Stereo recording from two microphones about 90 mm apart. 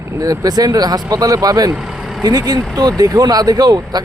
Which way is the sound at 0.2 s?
45° right (ahead or behind).